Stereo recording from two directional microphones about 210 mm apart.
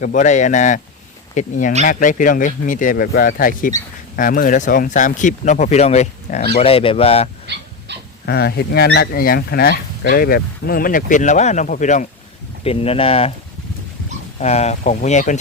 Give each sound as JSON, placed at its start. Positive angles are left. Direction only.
{"t": 0.0, "sound": "speech", "side_deg": 35}
{"t": 7.5, "sound": "dog", "side_deg": -55}
{"t": 8.3, "sound": "speech", "side_deg": 50}
{"t": 14.3, "sound": "speech", "side_deg": 30}